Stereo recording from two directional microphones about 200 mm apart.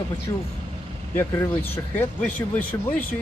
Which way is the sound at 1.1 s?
10° left (ahead or behind).